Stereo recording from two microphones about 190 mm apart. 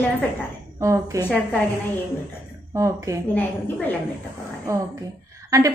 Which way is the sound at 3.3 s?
10° left (ahead or behind).